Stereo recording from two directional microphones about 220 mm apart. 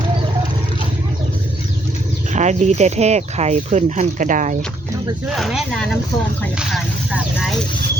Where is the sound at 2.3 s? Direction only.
30° right (ahead or behind).